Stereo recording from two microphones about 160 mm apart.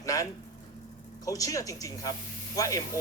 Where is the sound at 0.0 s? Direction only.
20° left (ahead or behind).